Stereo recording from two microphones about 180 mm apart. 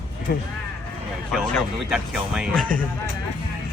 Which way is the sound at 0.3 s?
55° left (ahead or behind).